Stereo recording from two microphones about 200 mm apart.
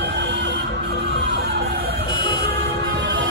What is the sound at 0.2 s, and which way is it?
Emergency vehicle, 60° right (ahead or behind).